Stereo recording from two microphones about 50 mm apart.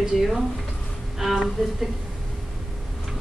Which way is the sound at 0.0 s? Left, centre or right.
Centre.